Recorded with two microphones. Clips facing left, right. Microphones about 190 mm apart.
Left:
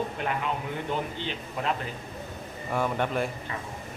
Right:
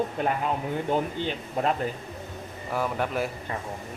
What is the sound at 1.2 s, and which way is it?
Speech, 45° right (ahead or behind).